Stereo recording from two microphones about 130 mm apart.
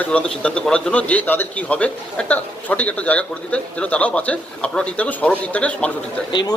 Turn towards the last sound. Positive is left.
turn(degrees=35)  # may be behind; listen again after turning